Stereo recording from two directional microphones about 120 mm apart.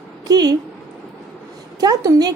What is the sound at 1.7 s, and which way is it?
Speech, 30° right (ahead or behind).